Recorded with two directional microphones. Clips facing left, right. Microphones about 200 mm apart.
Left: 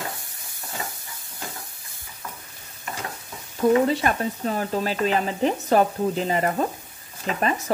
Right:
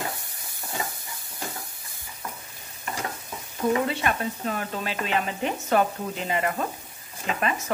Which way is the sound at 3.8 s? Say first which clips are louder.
Left 4 dB; 40° left (ahead or behind).